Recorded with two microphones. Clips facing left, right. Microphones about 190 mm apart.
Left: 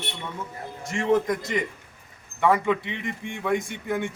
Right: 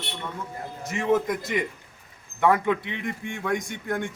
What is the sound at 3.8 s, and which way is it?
Speech, 5° left (ahead or behind).